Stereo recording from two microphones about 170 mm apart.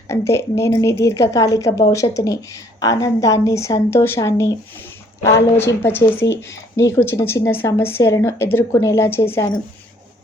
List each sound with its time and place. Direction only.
0.1 s a woman's voice: 15° left (ahead or behind)